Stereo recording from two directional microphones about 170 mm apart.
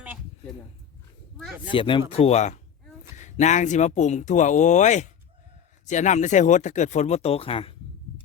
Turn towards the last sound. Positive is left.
turn(degrees=35)  # may be behind; listen again after turning